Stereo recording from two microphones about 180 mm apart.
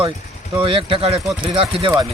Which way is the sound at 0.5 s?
30° right (ahead or behind).